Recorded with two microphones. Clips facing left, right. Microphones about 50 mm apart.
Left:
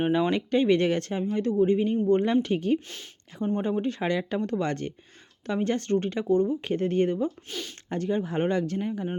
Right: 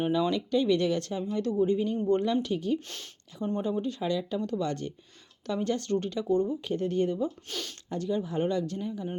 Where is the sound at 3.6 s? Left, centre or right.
Left.